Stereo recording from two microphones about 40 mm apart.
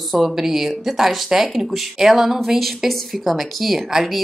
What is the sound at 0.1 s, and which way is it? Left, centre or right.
A woman's voice, centre.